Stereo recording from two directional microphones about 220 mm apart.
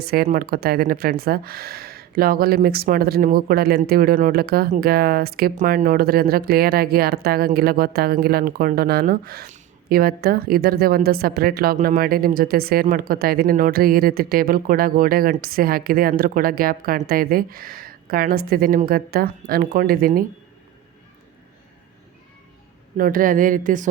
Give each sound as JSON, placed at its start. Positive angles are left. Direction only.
{"t": 0.1, "sound": "speech", "side_deg": -45}
{"t": 23.0, "sound": "speech", "side_deg": -40}